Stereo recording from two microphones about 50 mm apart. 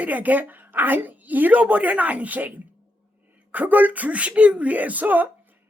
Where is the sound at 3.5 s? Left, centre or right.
Right.